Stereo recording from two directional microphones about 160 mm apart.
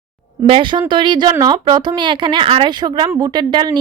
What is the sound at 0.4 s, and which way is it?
A woman's voice, 35° right (ahead or behind).